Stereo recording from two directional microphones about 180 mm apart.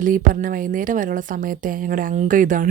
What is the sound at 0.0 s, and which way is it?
Speech, 50° right (ahead or behind).